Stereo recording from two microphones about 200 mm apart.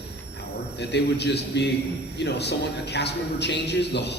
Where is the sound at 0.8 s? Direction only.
60° left (ahead or behind).